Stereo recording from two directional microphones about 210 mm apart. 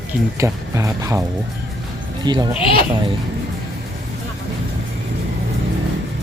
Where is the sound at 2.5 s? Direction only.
25° left (ahead or behind).